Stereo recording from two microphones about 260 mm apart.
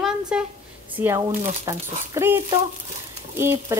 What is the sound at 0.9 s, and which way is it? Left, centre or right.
Speech, centre.